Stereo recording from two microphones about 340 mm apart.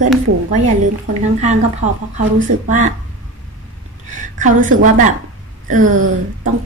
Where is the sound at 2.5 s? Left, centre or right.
Right.